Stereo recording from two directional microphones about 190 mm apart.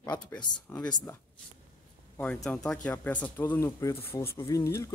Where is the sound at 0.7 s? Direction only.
10° left (ahead or behind).